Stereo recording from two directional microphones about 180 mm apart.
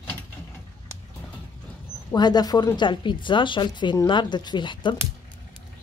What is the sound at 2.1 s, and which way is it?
Speech, 25° left (ahead or behind).